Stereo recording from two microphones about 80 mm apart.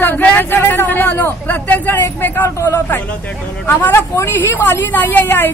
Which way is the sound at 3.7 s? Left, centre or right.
Left.